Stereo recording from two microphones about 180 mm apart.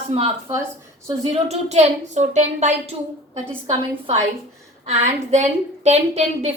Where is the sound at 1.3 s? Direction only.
35° right (ahead or behind).